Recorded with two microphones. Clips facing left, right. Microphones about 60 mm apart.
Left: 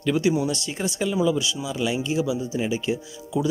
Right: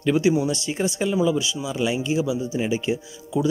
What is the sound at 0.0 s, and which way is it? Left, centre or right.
Speech, centre.